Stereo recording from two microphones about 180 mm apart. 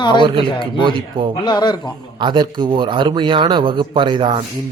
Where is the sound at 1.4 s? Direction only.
25° left (ahead or behind).